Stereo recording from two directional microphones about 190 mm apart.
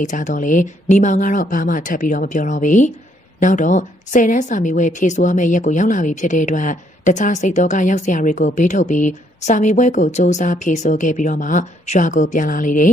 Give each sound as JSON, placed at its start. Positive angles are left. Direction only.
{"t": 0.0, "sound": "a woman's voice", "side_deg": 40}